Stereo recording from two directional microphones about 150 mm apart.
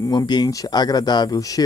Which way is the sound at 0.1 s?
30° left (ahead or behind).